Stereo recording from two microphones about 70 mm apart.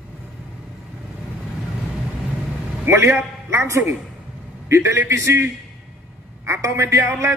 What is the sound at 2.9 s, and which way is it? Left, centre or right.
A man's voice, right.